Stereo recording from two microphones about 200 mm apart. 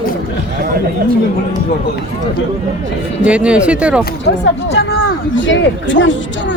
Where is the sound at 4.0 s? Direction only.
60° left (ahead or behind).